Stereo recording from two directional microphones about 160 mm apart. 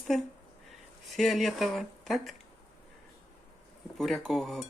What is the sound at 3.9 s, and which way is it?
Speech, centre (ahead or behind).